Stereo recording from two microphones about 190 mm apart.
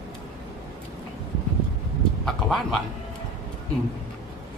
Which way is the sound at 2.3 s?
Centre (ahead or behind).